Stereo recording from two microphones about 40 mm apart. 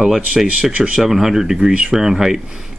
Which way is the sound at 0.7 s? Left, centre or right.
Right.